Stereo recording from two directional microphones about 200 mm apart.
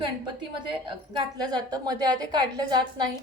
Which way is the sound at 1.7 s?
20° right (ahead or behind).